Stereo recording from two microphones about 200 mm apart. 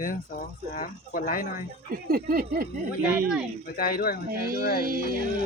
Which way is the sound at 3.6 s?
45° left (ahead or behind).